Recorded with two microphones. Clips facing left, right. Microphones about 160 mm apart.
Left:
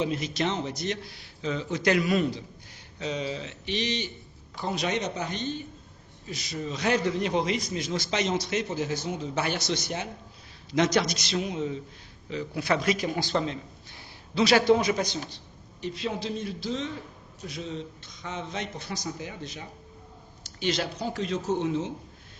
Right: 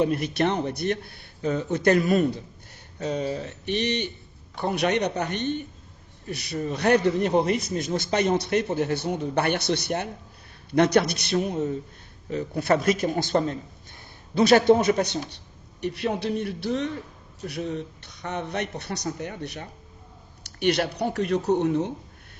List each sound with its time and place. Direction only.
0.0 s a man's voice: 60° right (ahead or behind)